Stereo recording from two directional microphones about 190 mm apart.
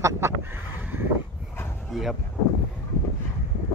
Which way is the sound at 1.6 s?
Centre (ahead or behind).